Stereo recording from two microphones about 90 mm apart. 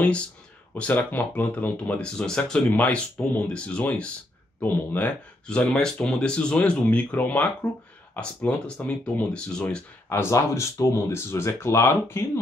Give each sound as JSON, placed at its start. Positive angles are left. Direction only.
{"t": 0.7, "sound": "speech", "side_deg": 15}
{"t": 10.0, "sound": "speech", "side_deg": 30}